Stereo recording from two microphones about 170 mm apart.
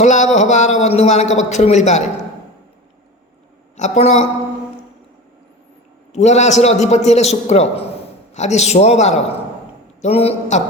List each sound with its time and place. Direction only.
0.0 s a man's voice: 45° left (ahead or behind)
3.8 s a man's voice: 40° left (ahead or behind)
6.1 s a man's voice: 40° left (ahead or behind)